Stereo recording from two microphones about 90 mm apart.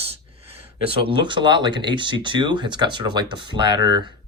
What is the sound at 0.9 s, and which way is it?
Speech, 75° right (ahead or behind).